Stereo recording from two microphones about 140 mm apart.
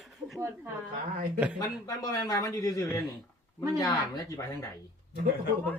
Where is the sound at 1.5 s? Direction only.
25° left (ahead or behind).